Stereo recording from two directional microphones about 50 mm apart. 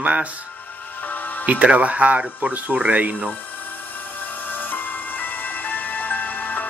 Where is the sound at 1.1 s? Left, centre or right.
Left.